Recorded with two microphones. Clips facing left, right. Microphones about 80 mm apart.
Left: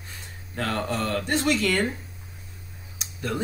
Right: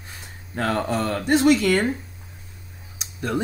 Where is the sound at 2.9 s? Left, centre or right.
Centre.